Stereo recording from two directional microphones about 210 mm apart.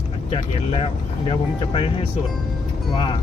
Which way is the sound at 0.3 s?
25° left (ahead or behind).